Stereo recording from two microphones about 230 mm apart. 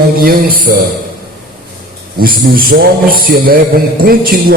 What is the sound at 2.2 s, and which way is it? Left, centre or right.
A man's voice, right.